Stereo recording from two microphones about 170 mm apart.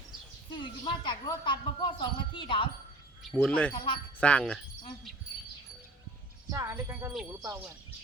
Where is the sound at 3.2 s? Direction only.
Centre (ahead or behind).